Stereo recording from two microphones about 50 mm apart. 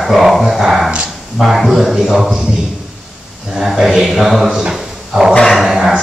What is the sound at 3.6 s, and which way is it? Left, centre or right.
Speech, centre.